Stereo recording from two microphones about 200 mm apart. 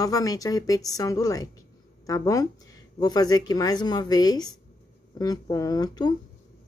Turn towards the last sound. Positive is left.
turn(degrees=20)  # may be behind; listen again after turning